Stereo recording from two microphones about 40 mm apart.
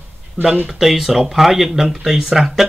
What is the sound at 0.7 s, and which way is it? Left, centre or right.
Speech, centre.